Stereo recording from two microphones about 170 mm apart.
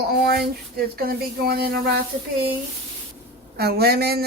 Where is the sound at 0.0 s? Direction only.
70° right (ahead or behind).